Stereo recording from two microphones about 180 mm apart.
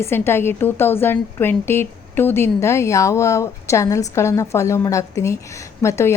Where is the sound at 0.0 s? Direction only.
15° left (ahead or behind).